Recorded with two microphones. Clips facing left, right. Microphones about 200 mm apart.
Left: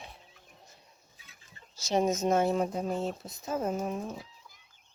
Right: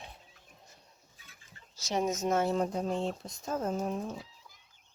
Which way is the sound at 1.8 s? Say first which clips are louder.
Left 4 dB; 30° left (ahead or behind).